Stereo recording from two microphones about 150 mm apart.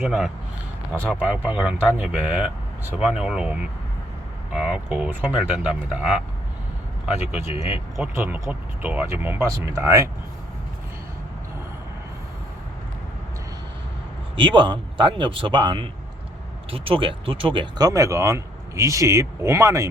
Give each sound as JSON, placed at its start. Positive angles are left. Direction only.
{"t": 0.0, "sound": "a man's voice", "side_deg": -5}
{"t": 7.5, "sound": "speech", "side_deg": 40}
{"t": 8.1, "sound": "a man's voice", "side_deg": -15}
{"t": 14.3, "sound": "speech", "side_deg": -35}